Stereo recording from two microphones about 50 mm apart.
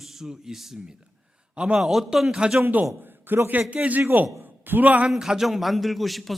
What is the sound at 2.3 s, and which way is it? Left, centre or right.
Speech, centre.